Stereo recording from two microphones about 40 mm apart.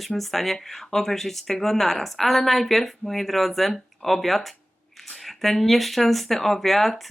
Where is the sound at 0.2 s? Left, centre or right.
Centre.